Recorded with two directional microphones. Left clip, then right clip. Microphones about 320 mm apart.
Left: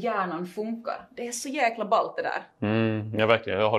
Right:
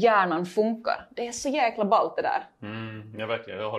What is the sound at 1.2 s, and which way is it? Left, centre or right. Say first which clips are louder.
A woman's voice: even; right.